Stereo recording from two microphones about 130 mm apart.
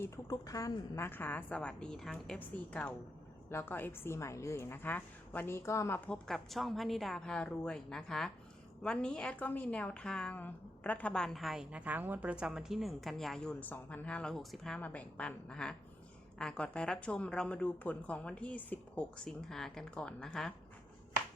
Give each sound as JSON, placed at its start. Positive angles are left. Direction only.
{"t": 0.0, "sound": "a woman's voice", "side_deg": 25}
{"t": 6.1, "sound": "a woman's voice", "side_deg": 5}